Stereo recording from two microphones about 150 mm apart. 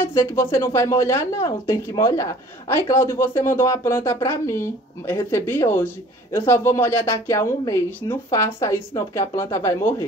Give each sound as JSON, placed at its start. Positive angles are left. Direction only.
{"t": 0.0, "sound": "speech", "side_deg": 15}